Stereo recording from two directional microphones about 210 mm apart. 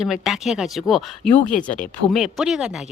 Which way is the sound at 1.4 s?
40° left (ahead or behind).